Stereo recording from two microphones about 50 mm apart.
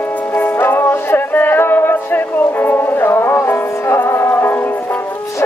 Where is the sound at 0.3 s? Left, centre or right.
Left.